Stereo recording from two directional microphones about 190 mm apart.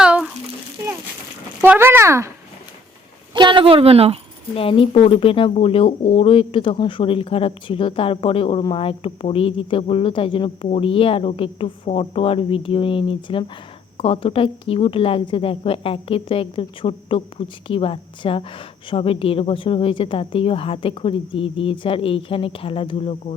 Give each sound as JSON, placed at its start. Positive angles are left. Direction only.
{"t": 0.0, "sound": "a sound", "side_deg": -5}
{"t": 1.6, "sound": "a child's voice", "side_deg": -10}
{"t": 3.3, "sound": "a woman's voice", "side_deg": -25}
{"t": 4.5, "sound": "a woman's voice", "side_deg": 30}